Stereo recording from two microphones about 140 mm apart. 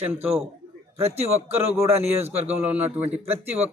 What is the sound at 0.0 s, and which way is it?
Speech, 10° right (ahead or behind).